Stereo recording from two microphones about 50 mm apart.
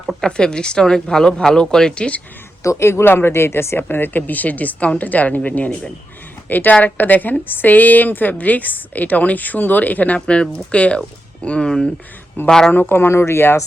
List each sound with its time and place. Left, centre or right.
0.2 s speech: centre
2.6 s speech: left
3.8 s a woman's voice: left
6.5 s a woman's voice: left
10.2 s a woman's voice: centre
12.9 s speech: left